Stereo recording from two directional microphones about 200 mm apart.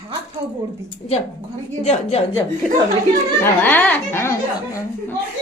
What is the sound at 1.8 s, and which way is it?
Speech, 30° left (ahead or behind).